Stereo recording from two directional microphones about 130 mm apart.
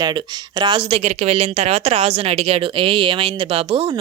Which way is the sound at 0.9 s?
50° right (ahead or behind).